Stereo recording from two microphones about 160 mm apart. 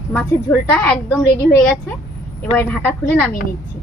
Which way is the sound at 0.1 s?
10° left (ahead or behind).